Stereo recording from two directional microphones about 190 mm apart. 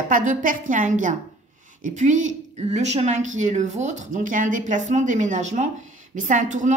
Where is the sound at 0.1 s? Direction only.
45° right (ahead or behind).